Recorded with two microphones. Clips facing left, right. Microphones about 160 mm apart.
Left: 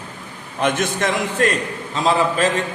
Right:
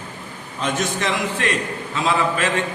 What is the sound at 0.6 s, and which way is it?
Speech, 55° left (ahead or behind).